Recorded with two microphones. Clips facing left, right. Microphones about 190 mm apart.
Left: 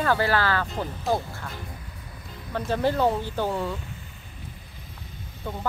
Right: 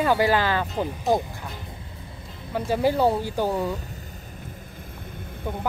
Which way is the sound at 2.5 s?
10° right (ahead or behind).